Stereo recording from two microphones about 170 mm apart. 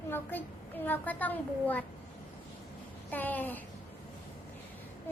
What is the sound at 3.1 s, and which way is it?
Speech, 10° left (ahead or behind).